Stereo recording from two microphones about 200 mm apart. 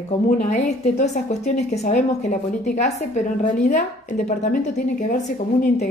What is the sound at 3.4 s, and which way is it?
A woman's voice, 40° left (ahead or behind).